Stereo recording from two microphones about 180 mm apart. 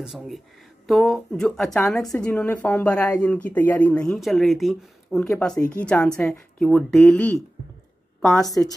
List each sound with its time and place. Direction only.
0.0 s a woman's voice: 5° right (ahead or behind)